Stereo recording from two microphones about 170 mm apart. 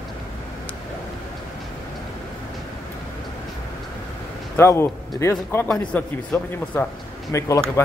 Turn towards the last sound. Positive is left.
turn(degrees=15)  # may be behind; listen again after turning